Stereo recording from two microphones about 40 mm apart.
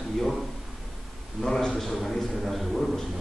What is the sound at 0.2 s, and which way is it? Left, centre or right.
A man's voice, centre.